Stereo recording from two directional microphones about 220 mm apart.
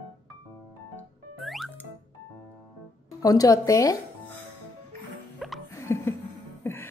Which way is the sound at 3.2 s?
15° left (ahead or behind).